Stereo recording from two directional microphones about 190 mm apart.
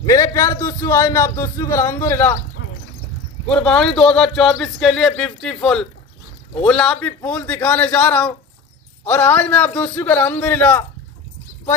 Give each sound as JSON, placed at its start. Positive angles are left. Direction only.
{"t": 0.0, "sound": "a man's voice", "side_deg": 20}
{"t": 3.4, "sound": "a man's voice", "side_deg": 5}